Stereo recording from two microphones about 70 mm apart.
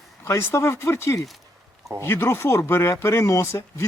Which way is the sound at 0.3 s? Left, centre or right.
Left.